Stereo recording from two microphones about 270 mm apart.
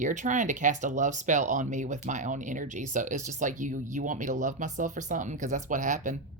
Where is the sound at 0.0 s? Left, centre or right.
Right.